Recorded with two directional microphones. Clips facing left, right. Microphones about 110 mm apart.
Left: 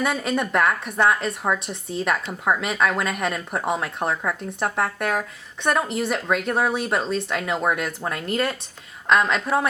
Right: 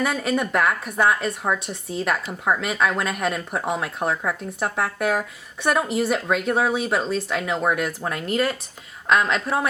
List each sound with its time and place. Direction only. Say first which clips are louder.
0.0 s a woman's voice: right 1 dB; centre (ahead or behind)